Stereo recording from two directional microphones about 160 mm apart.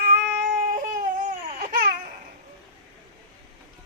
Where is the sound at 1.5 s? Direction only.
65° right (ahead or behind).